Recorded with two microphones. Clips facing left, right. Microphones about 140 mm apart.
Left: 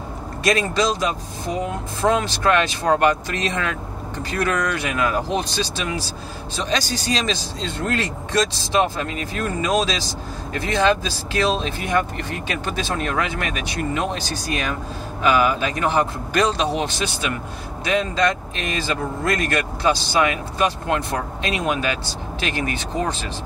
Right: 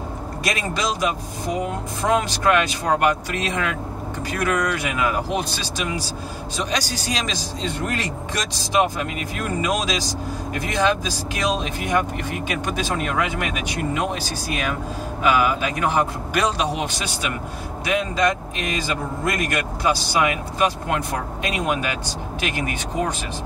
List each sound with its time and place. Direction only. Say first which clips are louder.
0.4 s speech: left 6 dB; 10° right (ahead or behind)